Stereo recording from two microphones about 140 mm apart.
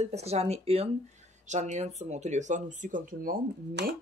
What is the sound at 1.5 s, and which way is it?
Speech, 60° right (ahead or behind).